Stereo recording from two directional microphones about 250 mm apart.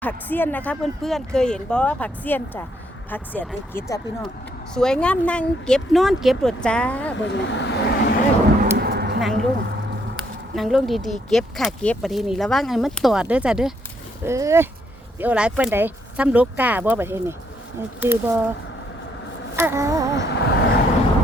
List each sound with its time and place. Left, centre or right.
0.0 s speech: centre
4.7 s speech: centre
7.2 s speech: left
8.7 s a sound: right
10.5 s speech: centre
19.5 s a sound: centre
20.3 s vehicle: left